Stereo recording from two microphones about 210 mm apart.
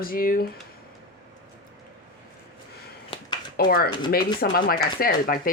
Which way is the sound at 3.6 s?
45° left (ahead or behind).